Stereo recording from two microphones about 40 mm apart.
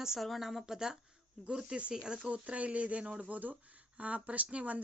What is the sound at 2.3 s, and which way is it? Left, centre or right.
Speech, right.